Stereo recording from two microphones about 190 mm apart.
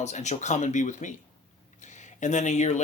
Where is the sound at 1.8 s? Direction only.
40° left (ahead or behind).